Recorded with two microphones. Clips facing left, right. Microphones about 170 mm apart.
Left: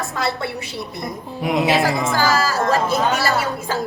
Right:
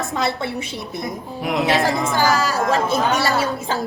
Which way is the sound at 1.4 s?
Centre (ahead or behind).